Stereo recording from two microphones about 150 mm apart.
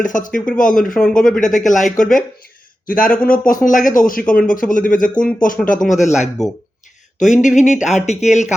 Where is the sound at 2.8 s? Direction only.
65° left (ahead or behind).